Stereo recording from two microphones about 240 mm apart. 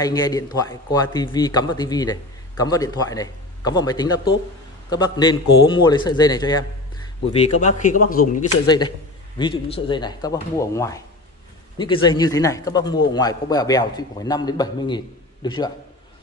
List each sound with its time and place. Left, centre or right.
0.0 s speech: centre
8.0 s speech: left
8.6 s speech: centre